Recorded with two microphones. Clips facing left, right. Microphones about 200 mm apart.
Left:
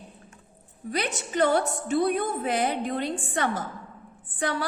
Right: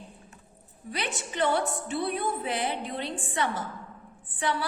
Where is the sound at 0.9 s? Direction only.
45° left (ahead or behind).